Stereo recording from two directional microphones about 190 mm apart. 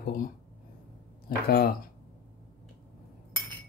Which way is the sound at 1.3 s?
50° left (ahead or behind).